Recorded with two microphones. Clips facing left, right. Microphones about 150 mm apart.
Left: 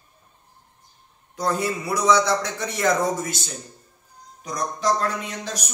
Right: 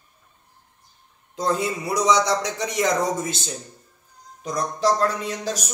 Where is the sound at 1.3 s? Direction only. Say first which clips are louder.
Right 1 dB; 20° right (ahead or behind).